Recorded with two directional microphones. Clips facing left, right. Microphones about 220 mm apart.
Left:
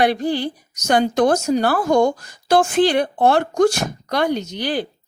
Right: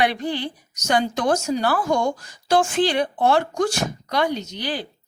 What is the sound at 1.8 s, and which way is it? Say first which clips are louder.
Speech: left 6 dB; 40° left (ahead or behind).